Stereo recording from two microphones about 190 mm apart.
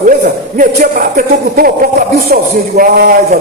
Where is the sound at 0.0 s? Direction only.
45° right (ahead or behind).